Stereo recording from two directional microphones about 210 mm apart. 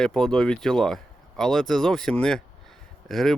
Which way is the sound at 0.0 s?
5° left (ahead or behind).